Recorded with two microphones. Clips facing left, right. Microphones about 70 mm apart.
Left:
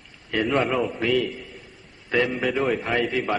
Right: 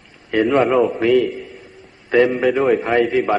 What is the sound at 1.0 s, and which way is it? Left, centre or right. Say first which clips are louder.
Speech: right 6 dB; centre.